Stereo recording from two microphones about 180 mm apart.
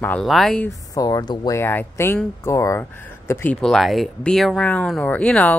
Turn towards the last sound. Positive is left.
turn(degrees=5)  # may be behind; listen again after turning